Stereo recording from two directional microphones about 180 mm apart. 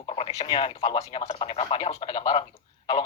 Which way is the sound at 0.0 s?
35° left (ahead or behind).